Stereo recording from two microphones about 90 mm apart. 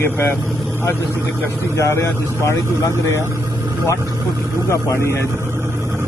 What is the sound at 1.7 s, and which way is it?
Speech, 30° left (ahead or behind).